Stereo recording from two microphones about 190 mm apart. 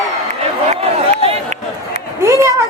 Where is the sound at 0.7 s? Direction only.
35° right (ahead or behind).